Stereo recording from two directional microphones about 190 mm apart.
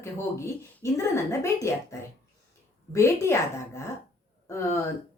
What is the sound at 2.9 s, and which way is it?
Speech, 15° left (ahead or behind).